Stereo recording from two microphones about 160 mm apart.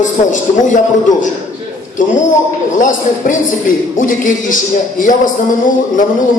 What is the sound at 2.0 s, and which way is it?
Music, 55° left (ahead or behind).